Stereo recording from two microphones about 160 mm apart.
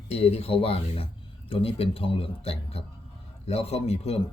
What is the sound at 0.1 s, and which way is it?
Speech, 40° left (ahead or behind).